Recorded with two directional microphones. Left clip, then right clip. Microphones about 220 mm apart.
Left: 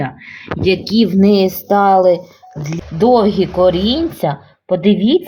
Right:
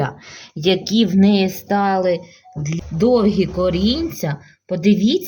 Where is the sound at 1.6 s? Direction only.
50° right (ahead or behind).